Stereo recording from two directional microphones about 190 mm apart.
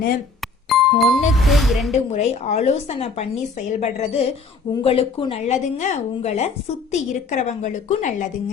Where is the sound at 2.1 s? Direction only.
35° left (ahead or behind).